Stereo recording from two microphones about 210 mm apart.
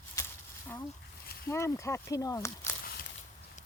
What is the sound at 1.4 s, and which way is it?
Speech, 15° left (ahead or behind).